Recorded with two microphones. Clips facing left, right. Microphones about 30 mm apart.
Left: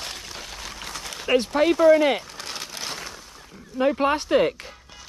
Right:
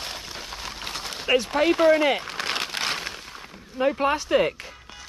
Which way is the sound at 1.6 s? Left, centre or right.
Right.